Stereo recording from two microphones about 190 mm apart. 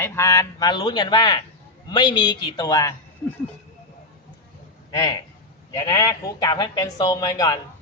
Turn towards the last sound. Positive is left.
turn(degrees=20)  # may be behind; listen again after turning